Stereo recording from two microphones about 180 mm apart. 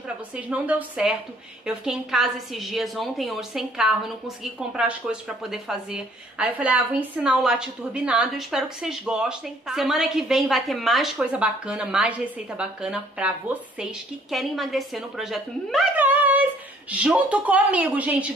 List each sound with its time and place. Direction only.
0.4 s a woman's voice: 10° right (ahead or behind)